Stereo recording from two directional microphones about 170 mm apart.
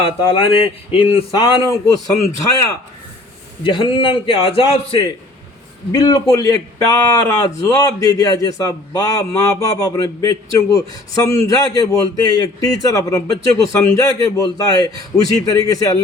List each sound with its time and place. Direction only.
0.0 s speech: 30° left (ahead or behind)
3.6 s speech: 30° left (ahead or behind)
5.9 s a man's voice: 20° left (ahead or behind)